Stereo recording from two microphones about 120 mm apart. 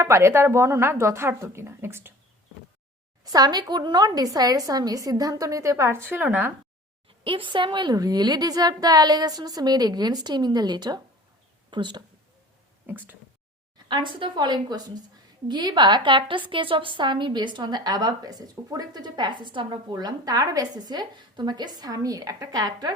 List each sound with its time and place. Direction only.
0.0 s speech: 25° right (ahead or behind)
3.2 s a woman's voice: 35° right (ahead or behind); by 6.5 s 15° right (ahead or behind)
7.3 s a woman's voice: 45° right (ahead or behind)
12.9 s speech: 15° right (ahead or behind)
13.8 s a woman's voice: 40° right (ahead or behind)